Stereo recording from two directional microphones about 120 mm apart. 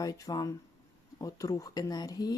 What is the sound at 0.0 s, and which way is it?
Speech, 30° left (ahead or behind).